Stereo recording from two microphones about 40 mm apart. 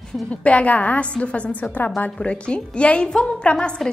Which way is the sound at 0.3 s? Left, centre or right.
Left.